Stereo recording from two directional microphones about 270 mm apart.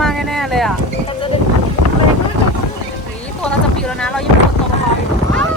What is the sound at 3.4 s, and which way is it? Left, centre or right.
Wind noise, centre.